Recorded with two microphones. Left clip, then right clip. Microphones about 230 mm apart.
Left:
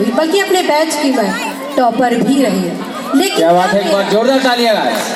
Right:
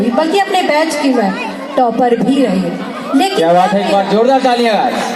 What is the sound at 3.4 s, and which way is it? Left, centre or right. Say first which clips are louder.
A woman's voice: even; right.